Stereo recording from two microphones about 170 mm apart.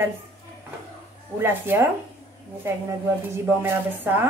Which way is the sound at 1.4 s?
10° right (ahead or behind).